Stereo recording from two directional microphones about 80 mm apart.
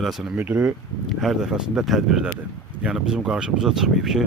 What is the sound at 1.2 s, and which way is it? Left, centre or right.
Speech, centre.